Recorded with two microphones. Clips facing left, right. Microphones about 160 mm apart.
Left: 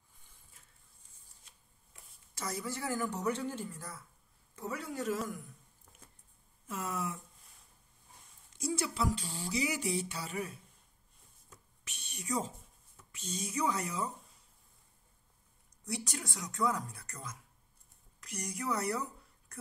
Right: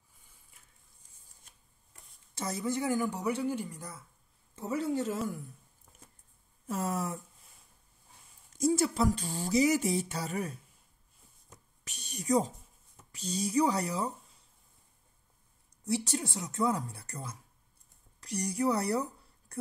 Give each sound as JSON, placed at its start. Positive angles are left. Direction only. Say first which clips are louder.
{"t": 2.3, "sound": "a woman's voice", "louder": "right 6 dB", "side_deg": -25}
{"t": 6.7, "sound": "speech", "louder": "right 5 dB", "side_deg": -40}
{"t": 8.5, "sound": "speech", "louder": "right 7 dB", "side_deg": -45}
{"t": 11.5, "sound": "a sound", "louder": "right 3 dB", "side_deg": -40}
{"t": 13.1, "sound": "speech", "louder": "right 8 dB", "side_deg": -35}
{"t": 15.8, "sound": "speech", "louder": "right 8 dB", "side_deg": -30}
{"t": 19.5, "sound": "a sound", "louder": "right 9 dB", "side_deg": -35}